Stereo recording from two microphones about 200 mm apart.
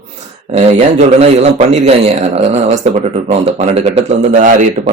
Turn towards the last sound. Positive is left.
turn(degrees=-40)  # may be behind; listen again after turning